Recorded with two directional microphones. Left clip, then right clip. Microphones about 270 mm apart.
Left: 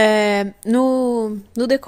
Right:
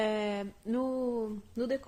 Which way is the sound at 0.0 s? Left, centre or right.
Left.